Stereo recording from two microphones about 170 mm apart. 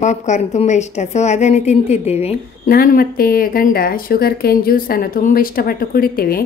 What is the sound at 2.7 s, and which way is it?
Speech, 60° left (ahead or behind).